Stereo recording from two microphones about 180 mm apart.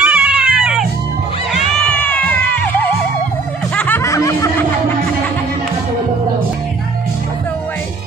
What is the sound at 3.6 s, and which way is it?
Snicker, 5° left (ahead or behind).